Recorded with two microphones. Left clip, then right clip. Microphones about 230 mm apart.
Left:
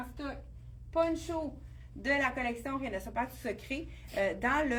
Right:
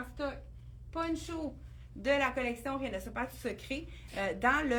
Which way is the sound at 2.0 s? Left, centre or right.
Centre.